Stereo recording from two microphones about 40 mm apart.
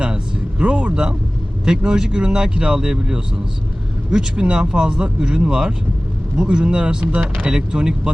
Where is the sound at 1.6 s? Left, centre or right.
Centre.